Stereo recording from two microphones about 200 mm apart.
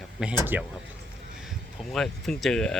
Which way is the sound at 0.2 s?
5° right (ahead or behind).